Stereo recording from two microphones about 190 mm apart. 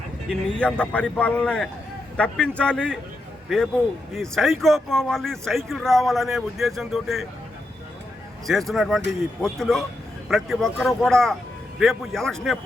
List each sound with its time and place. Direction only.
0.3 s speech: 5° left (ahead or behind)
4.1 s speech: centre (ahead or behind)
8.4 s speech: centre (ahead or behind)